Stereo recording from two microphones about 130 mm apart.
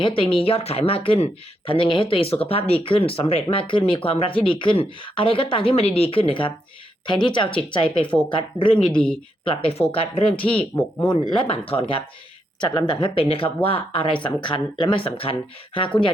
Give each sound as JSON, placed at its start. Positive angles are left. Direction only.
{"t": 0.0, "sound": "speech", "side_deg": 45}
{"t": 9.4, "sound": "speech", "side_deg": 45}
{"t": 10.4, "sound": "speech", "side_deg": 10}
{"t": 11.1, "sound": "speech", "side_deg": 40}
{"t": 12.5, "sound": "speech", "side_deg": 35}